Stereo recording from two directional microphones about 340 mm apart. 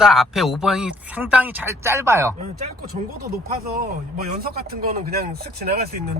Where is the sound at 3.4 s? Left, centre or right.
Right.